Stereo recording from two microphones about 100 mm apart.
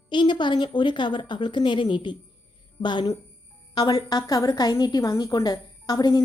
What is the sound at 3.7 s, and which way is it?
A woman's voice, 40° left (ahead or behind).